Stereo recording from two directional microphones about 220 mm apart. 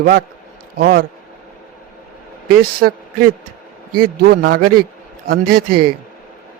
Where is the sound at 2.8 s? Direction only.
50° right (ahead or behind).